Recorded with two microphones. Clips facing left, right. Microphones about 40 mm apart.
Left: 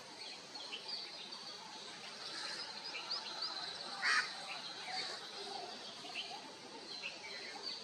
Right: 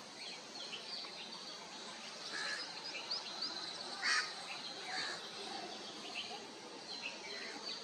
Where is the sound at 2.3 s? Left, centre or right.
Right.